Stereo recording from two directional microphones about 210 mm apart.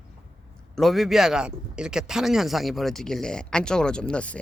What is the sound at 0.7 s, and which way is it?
Speech, centre (ahead or behind).